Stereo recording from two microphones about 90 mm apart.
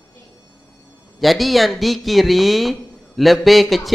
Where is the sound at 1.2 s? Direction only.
Centre (ahead or behind).